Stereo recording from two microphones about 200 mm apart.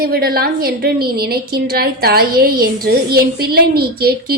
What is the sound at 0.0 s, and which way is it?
A woman's voice, 50° right (ahead or behind).